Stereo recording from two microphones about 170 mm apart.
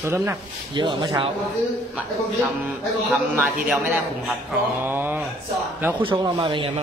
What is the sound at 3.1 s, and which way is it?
A man's voice, 10° right (ahead or behind).